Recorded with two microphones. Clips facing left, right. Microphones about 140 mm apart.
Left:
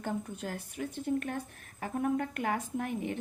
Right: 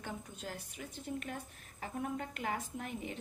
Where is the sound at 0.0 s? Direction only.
50° left (ahead or behind).